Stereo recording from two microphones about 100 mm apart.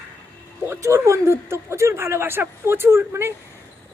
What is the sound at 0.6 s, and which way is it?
A man's voice, 30° right (ahead or behind).